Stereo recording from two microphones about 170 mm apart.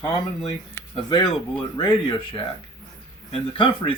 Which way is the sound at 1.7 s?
30° left (ahead or behind).